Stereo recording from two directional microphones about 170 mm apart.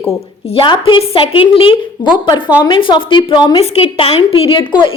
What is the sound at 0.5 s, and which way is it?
A woman's voice, 30° left (ahead or behind).